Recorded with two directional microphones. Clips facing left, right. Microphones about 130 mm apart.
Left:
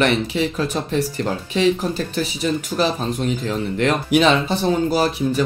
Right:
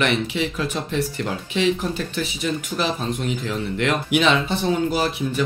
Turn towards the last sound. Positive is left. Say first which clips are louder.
# left 3 dB
turn(degrees=40)  # may be behind; listen again after turning